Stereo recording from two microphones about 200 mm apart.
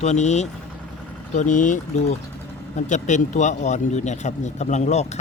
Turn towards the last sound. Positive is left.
turn(degrees=35)  # may be behind; listen again after turning